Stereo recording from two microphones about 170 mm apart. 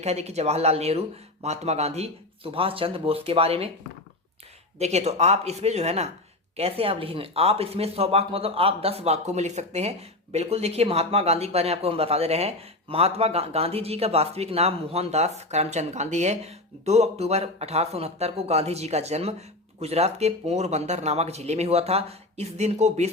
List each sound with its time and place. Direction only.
0.0 s speech: 40° right (ahead or behind)
4.8 s speech: 40° right (ahead or behind)